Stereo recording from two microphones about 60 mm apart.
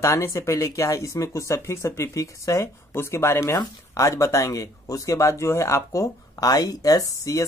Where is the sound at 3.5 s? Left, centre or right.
Left.